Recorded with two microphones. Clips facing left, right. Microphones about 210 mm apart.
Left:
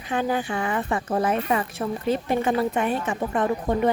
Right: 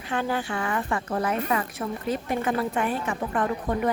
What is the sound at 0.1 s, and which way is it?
A woman's voice, 15° left (ahead or behind).